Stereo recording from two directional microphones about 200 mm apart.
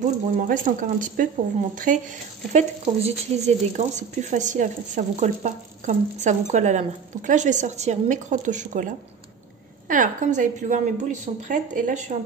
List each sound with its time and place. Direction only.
0.0 s speech: 40° right (ahead or behind)